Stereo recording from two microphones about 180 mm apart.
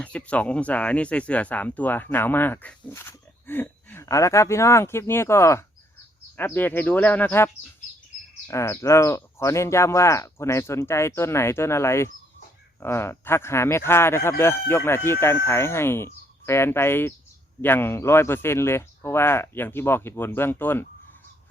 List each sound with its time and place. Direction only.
0.0 s speech: 5° left (ahead or behind)